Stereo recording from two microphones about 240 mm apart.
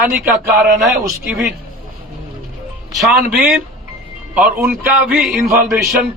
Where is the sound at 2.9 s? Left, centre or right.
Centre.